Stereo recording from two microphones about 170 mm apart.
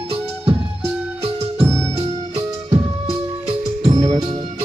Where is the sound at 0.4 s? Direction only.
35° right (ahead or behind).